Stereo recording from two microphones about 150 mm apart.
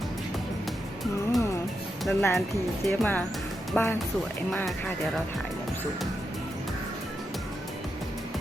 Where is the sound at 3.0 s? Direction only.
10° left (ahead or behind).